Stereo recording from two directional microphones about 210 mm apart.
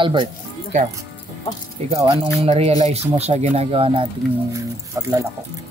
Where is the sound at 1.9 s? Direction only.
25° right (ahead or behind).